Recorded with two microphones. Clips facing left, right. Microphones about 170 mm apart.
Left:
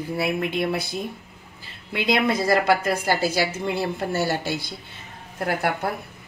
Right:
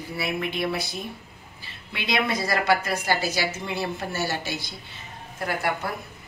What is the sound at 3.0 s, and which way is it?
A woman's voice, 55° left (ahead or behind).